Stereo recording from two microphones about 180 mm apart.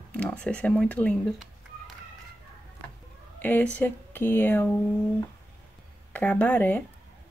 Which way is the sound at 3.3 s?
10° left (ahead or behind).